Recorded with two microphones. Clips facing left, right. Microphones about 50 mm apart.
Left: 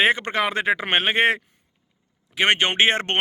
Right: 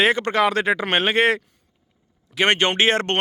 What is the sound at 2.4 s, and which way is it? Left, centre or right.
Speech, centre.